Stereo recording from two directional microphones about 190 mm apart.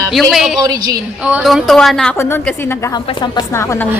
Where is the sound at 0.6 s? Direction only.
20° right (ahead or behind).